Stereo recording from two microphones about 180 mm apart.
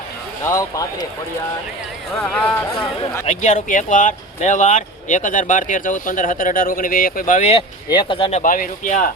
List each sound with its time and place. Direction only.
0.4 s speech: 20° left (ahead or behind)
2.2 s speech: 5° left (ahead or behind)
3.2 s speech: 45° left (ahead or behind)
7.9 s speech: 25° left (ahead or behind); by 9.0 s 45° left (ahead or behind)